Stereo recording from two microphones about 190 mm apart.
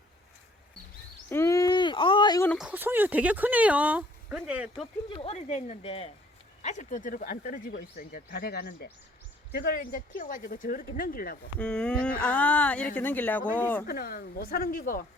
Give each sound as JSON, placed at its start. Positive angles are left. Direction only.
{"t": 1.3, "sound": "a sound", "side_deg": 15}
{"t": 2.6, "sound": "speech", "side_deg": -10}
{"t": 5.0, "sound": "speech", "side_deg": 30}
{"t": 11.6, "sound": "speech", "side_deg": 5}
{"t": 13.8, "sound": "speech", "side_deg": 50}